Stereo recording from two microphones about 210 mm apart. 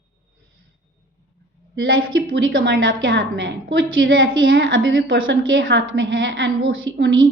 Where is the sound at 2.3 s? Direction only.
60° right (ahead or behind).